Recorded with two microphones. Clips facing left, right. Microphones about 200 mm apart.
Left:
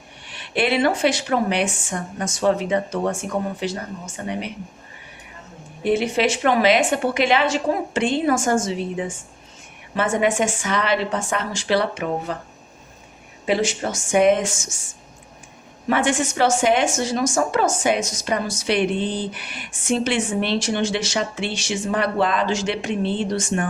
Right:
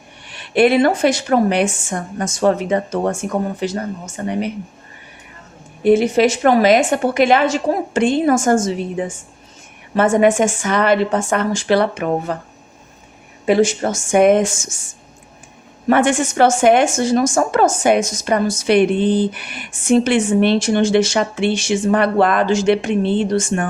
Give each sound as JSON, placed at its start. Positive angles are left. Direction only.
{"t": 0.5, "sound": "a woman's voice", "side_deg": -45}
{"t": 5.8, "sound": "a woman's voice", "side_deg": -45}
{"t": 15.9, "sound": "a woman's voice", "side_deg": -50}